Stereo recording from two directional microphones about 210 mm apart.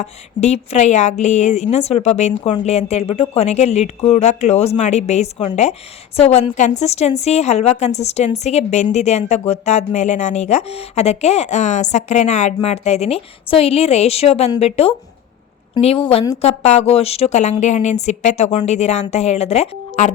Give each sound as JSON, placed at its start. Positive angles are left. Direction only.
{"t": 0.0, "sound": "a woman's voice", "side_deg": 30}